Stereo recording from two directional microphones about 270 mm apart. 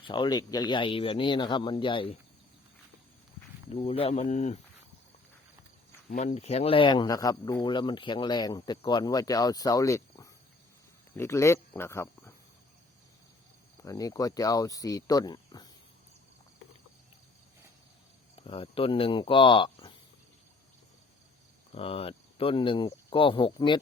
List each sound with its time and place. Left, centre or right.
0.0 s speech: centre
3.7 s speech: left
6.1 s speech: left; by 12.3 s centre
13.8 s speech: centre
18.3 s speech: centre
21.7 s speech: left